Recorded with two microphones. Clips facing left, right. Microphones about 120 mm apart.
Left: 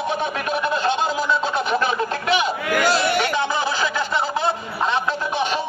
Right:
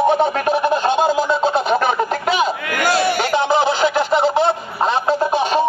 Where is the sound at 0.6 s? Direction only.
45° right (ahead or behind).